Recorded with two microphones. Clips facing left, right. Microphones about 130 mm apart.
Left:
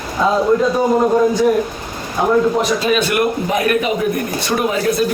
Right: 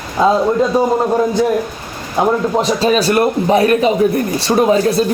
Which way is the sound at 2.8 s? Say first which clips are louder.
Right 3 dB; 35° right (ahead or behind).